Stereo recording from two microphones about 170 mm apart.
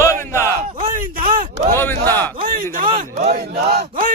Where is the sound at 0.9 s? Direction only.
50° right (ahead or behind).